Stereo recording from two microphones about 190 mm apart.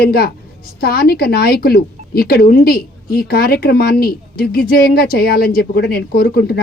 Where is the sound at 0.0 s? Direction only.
55° left (ahead or behind).